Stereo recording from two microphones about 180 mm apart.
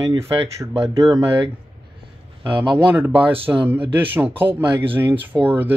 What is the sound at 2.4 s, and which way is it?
Speech, 10° right (ahead or behind).